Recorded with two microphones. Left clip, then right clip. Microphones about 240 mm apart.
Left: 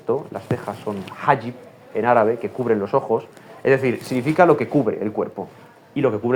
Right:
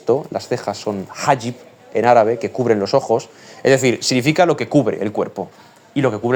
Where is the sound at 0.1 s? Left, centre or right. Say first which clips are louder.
Right 5 dB; right.